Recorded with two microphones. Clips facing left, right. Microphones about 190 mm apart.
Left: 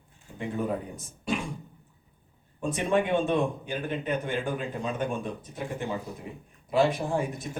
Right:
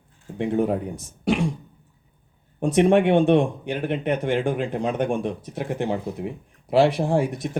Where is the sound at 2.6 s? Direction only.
75° right (ahead or behind).